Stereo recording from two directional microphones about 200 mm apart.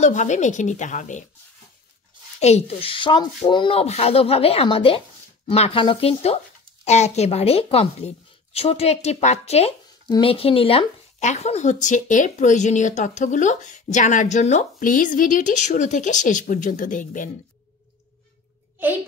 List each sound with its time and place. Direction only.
0.0 s speech: 35° left (ahead or behind)
2.4 s speech: 30° left (ahead or behind)